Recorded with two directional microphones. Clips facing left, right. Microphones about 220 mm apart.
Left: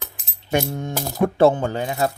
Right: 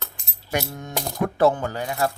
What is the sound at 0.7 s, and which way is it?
Speech, 25° left (ahead or behind).